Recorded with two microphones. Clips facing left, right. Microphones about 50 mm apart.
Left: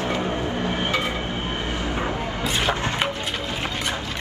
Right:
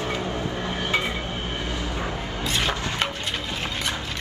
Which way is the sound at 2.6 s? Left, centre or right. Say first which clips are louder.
Left 2 dB; centre.